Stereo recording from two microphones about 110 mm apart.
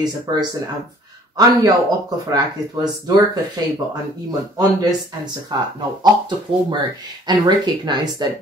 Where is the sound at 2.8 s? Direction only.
40° right (ahead or behind).